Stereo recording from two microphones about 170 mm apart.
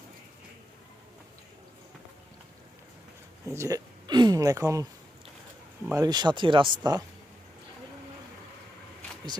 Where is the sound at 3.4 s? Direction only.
15° right (ahead or behind).